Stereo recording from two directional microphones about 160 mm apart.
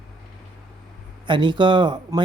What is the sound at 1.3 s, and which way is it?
Speech, 30° right (ahead or behind).